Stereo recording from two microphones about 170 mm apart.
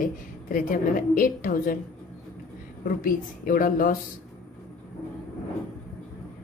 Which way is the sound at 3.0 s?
55° left (ahead or behind).